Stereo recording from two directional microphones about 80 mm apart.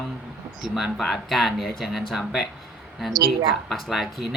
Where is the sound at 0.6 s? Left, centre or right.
Centre.